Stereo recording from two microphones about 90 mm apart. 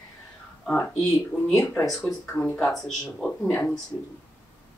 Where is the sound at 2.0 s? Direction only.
20° left (ahead or behind).